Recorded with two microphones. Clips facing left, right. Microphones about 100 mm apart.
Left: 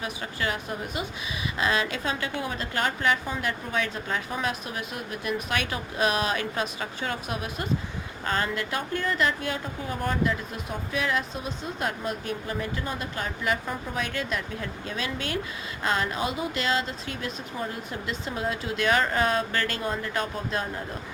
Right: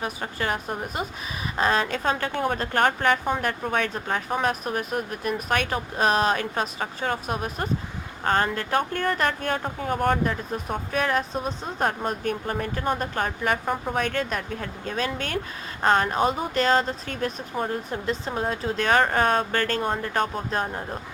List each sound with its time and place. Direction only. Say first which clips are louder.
0.0 s a woman's voice: right 2 dB; 40° right (ahead or behind)